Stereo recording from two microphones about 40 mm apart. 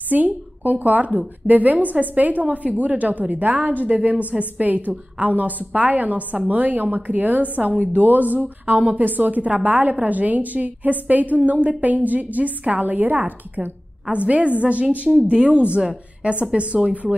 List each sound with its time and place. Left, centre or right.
0.1 s a woman's voice: right
6.6 s a woman's voice: right